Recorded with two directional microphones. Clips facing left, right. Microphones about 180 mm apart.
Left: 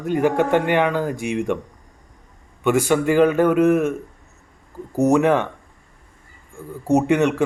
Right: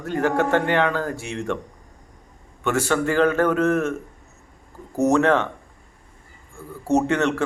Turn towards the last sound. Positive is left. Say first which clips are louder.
# left 3 dB
turn(degrees=15)  # may be behind; listen again after turning